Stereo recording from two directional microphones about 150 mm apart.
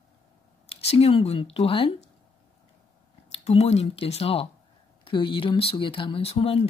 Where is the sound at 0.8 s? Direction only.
40° left (ahead or behind).